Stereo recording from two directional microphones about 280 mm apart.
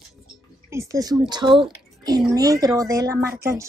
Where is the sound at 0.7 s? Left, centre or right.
Centre.